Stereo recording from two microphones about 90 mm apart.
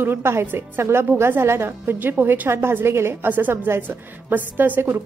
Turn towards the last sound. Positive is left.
turn(degrees=-20)  # may be behind; listen again after turning